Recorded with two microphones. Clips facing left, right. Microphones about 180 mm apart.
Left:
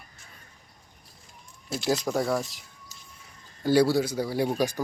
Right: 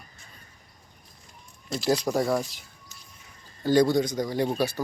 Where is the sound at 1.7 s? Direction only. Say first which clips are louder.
Right 2 dB; centre (ahead or behind).